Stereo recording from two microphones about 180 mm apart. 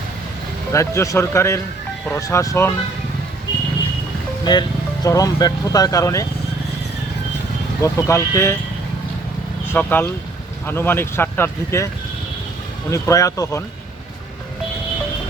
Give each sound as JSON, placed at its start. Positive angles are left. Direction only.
{"t": 0.7, "sound": "speech", "side_deg": 15}
{"t": 4.5, "sound": "speech", "side_deg": 25}
{"t": 7.8, "sound": "speech", "side_deg": 15}
{"t": 9.7, "sound": "speech", "side_deg": 10}
{"t": 12.9, "sound": "speech", "side_deg": 15}